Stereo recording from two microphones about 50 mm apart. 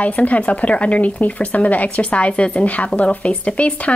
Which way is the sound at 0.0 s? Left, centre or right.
Left.